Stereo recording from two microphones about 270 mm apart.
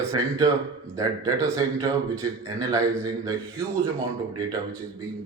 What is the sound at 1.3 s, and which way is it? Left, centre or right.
Speech, centre.